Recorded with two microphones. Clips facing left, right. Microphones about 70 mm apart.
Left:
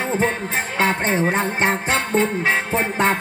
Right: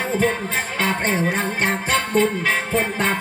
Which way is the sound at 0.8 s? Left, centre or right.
Left.